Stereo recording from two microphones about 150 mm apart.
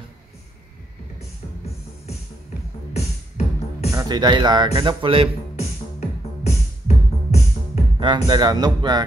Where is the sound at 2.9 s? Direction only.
45° left (ahead or behind).